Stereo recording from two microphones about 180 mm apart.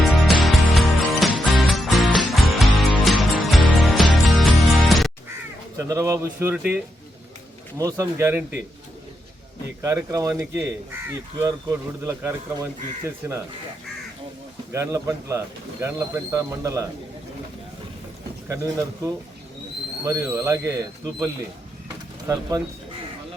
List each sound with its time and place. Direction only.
0.1 s music: centre (ahead or behind)
5.7 s speech: 15° right (ahead or behind)
9.8 s speech: 15° right (ahead or behind)
14.7 s speech: 15° right (ahead or behind)
18.4 s speech: 15° right (ahead or behind)
22.3 s speech: 20° right (ahead or behind)